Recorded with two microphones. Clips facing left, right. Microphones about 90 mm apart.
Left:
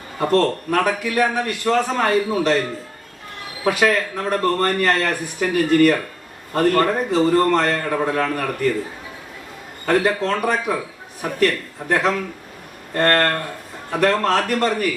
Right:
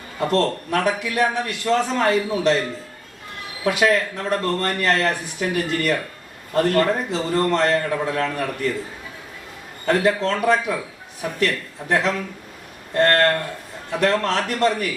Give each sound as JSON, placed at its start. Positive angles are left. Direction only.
{"t": 0.2, "sound": "a man's voice", "side_deg": 40}
{"t": 3.6, "sound": "a man's voice", "side_deg": 40}
{"t": 9.8, "sound": "speech", "side_deg": 40}